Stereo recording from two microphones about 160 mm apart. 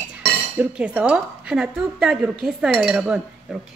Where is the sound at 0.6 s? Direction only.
10° right (ahead or behind).